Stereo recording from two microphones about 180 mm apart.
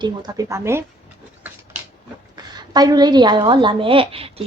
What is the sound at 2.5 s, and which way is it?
Speech, 20° right (ahead or behind).